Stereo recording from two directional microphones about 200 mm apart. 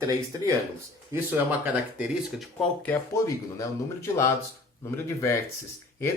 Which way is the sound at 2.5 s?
5° left (ahead or behind).